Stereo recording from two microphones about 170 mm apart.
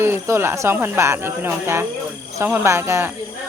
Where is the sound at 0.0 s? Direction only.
15° right (ahead or behind).